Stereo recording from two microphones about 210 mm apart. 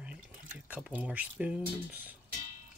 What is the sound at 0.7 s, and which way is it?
Speech, 5° right (ahead or behind).